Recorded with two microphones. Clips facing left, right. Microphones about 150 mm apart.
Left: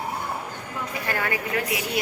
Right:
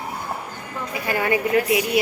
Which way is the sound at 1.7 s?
25° right (ahead or behind).